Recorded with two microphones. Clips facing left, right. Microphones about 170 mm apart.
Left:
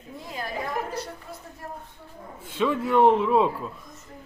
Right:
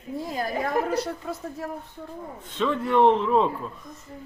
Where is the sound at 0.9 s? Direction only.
85° right.